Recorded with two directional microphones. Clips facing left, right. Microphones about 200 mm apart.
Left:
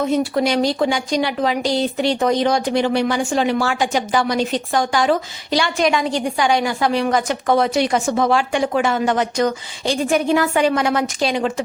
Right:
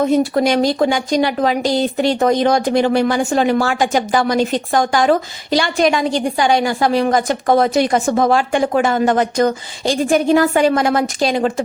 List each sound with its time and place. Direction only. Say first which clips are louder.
0.1 s a woman's voice: right 3 dB; 45° right (ahead or behind)